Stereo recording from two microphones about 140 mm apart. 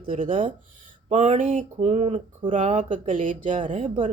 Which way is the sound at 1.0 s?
55° right (ahead or behind).